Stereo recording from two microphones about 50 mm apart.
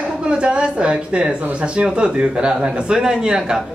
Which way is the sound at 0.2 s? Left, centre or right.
Right.